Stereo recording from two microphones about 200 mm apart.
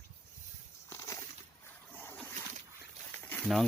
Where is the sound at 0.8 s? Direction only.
15° left (ahead or behind).